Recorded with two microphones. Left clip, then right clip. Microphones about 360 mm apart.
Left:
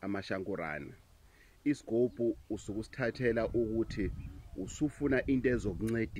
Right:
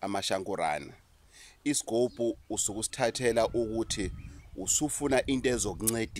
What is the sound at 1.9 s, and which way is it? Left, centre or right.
Speech, right.